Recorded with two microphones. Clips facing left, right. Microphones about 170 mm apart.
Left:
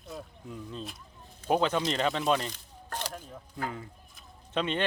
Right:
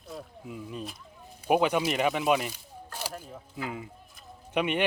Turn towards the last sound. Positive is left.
turn(degrees=-15)  # may be behind; listen again after turning